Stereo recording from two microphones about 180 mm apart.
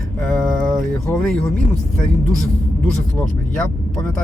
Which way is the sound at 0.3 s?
Centre (ahead or behind).